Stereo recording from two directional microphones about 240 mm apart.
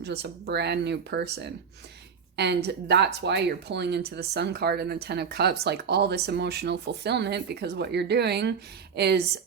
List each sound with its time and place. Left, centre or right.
0.0 s speech: right